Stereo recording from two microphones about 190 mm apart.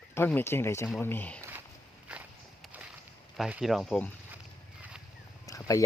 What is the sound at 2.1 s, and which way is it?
Walk, 5° right (ahead or behind).